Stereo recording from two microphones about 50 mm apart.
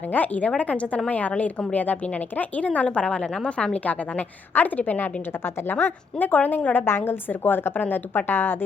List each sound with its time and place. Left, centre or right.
0.1 s a woman's voice: left
6.8 s a woman's voice: left